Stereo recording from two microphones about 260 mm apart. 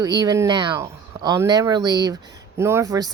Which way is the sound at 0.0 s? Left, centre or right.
Centre.